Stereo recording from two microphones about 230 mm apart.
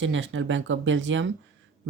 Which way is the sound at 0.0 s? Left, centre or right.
Right.